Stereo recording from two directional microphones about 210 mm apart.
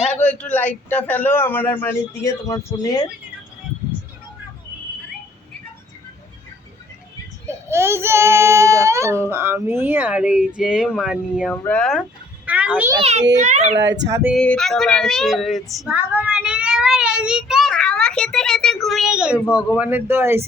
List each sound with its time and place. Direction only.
0.2 s a man's voice: 5° left (ahead or behind)
7.7 s a child's voice: 10° right (ahead or behind)
11.5 s a child's voice: 10° left (ahead or behind); by 13.0 s 10° right (ahead or behind)
13.0 s a child's voice: 30° right (ahead or behind)
13.7 s speech: 55° right (ahead or behind)
14.1 s a child's voice: 10° right (ahead or behind)
14.3 s a child's voice: 5° left (ahead or behind)